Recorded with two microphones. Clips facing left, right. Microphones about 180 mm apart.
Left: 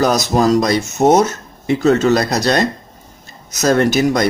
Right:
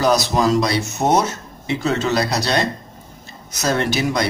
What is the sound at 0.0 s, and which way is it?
Speech, 45° left (ahead or behind).